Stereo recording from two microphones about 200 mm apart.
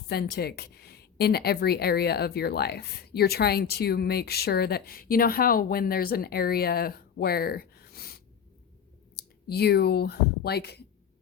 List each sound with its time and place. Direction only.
0.1 s speech: 50° left (ahead or behind)